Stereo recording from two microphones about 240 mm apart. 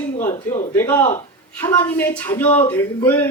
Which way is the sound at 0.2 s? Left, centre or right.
Centre.